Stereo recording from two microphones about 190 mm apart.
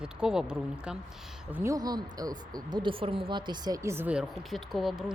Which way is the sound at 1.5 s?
15° right (ahead or behind).